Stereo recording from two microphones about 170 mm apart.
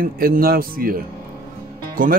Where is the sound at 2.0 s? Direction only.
55° right (ahead or behind).